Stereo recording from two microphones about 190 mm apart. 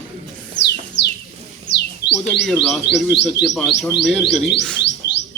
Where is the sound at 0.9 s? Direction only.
70° left (ahead or behind).